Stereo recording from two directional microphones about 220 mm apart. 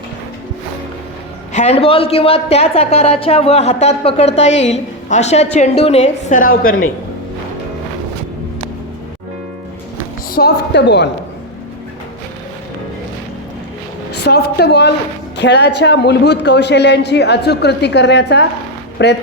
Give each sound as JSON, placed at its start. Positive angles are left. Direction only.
{"t": 1.5, "sound": "a woman's voice", "side_deg": 30}
{"t": 10.0, "sound": "a woman's voice", "side_deg": 45}
{"t": 14.1, "sound": "speech", "side_deg": 45}